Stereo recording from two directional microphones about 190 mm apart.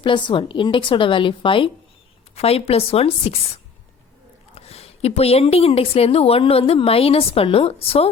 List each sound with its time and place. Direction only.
0.0 s a woman's voice: 25° left (ahead or behind)
4.5 s a woman's voice: 30° left (ahead or behind)